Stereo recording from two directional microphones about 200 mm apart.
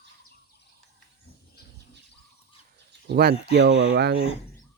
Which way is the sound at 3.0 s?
55° right (ahead or behind).